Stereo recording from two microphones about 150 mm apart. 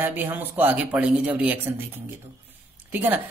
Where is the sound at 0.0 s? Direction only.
15° right (ahead or behind).